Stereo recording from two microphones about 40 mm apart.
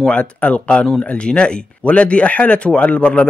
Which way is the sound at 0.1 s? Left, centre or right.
Left.